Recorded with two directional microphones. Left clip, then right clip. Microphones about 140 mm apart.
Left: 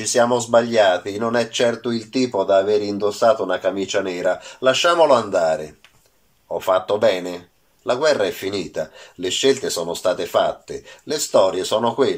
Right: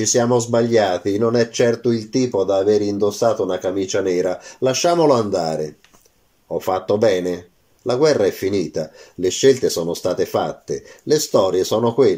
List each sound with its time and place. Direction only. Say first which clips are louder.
0.7 s speech: even; 40° right (ahead or behind)
6.6 s speech: even; 45° right (ahead or behind)